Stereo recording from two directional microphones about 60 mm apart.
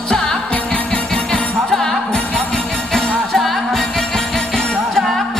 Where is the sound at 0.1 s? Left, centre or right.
Centre.